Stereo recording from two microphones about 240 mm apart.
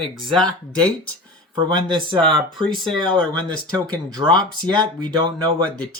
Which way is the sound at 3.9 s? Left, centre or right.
Centre.